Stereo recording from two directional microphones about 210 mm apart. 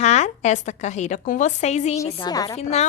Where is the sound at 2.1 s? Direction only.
20° left (ahead or behind).